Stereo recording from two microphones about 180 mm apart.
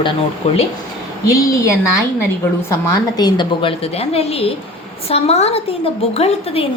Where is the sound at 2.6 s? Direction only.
15° left (ahead or behind).